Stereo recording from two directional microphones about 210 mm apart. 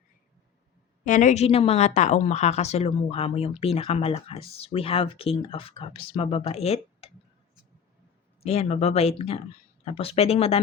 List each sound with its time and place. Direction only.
1.0 s a woman's voice: 35° left (ahead or behind)
8.4 s a woman's voice: 30° left (ahead or behind)